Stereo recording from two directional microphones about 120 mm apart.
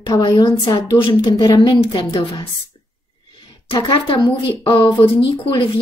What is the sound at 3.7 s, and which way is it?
A woman's voice, 40° left (ahead or behind).